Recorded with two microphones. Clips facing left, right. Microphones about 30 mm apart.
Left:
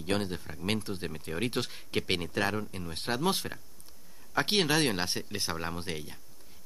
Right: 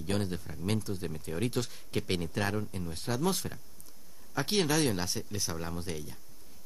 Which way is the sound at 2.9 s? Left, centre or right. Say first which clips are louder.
Left 2 dB; left.